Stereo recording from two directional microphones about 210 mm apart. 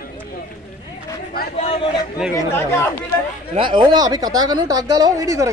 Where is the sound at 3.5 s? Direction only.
20° right (ahead or behind).